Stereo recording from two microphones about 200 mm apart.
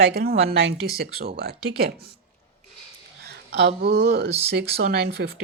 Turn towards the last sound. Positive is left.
turn(degrees=-55)  # may be behind; listen again after turning